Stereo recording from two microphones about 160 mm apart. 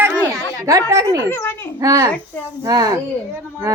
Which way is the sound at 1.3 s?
15° left (ahead or behind).